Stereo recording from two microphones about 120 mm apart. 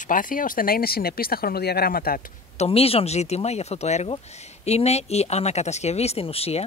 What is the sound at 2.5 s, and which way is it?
Speech, 55° left (ahead or behind).